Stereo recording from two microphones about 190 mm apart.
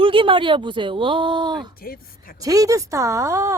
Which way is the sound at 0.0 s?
25° right (ahead or behind).